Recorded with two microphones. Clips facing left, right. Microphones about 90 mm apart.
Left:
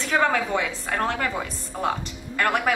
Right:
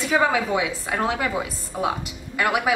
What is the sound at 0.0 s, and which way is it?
A woman's voice, 5° right (ahead or behind).